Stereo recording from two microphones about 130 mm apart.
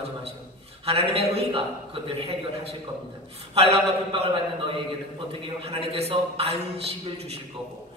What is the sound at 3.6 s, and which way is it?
Speech, 50° right (ahead or behind).